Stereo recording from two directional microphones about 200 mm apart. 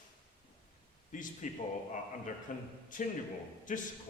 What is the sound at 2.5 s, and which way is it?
Speech, 40° left (ahead or behind).